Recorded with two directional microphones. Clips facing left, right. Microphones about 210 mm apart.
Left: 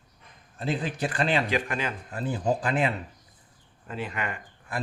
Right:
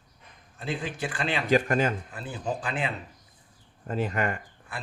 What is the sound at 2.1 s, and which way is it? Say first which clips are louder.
Speech: left 6 dB; 40° left (ahead or behind).